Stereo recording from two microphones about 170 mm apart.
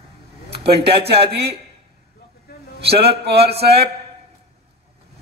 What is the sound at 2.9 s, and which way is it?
Speech, 35° right (ahead or behind).